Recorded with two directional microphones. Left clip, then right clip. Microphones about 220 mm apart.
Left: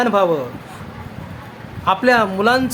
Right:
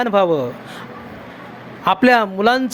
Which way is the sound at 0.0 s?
25° right (ahead or behind).